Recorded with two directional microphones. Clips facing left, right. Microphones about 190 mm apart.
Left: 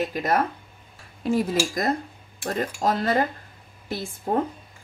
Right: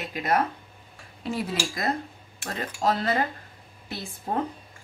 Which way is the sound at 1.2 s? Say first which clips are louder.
Left 6 dB; 45° left (ahead or behind).